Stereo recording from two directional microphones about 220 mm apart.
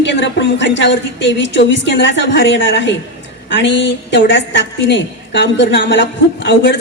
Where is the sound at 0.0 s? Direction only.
55° left (ahead or behind).